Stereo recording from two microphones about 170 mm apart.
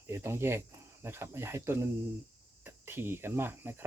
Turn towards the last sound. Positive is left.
turn(degrees=-15)  # may be behind; listen again after turning